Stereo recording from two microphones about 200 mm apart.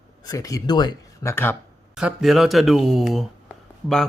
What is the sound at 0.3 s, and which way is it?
Speech, 15° left (ahead or behind).